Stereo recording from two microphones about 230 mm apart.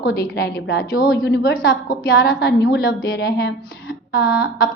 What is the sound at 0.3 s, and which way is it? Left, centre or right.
A woman's voice, left.